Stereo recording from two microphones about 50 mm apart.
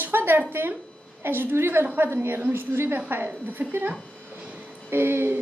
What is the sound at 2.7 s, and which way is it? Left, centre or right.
Speech, right.